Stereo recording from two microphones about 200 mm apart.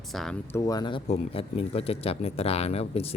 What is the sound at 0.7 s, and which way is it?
Speech, 20° left (ahead or behind).